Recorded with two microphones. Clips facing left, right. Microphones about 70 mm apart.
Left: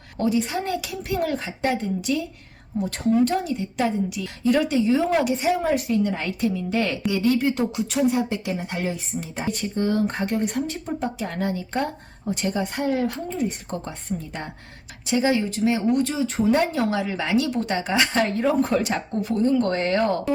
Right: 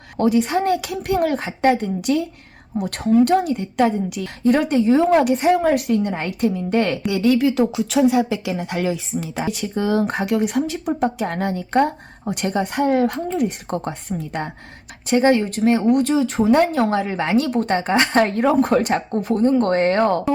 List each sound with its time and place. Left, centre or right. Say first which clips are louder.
0.2 s a woman's voice: right 6 dB; right
6.1 s speech: right 4 dB; right
7.1 s speech: right 3 dB; right
8.0 s speech: right 3 dB; right
15.0 s speech: right 5 dB; right